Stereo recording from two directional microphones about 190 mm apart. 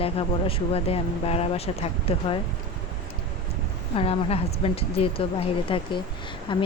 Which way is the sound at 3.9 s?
30° left (ahead or behind).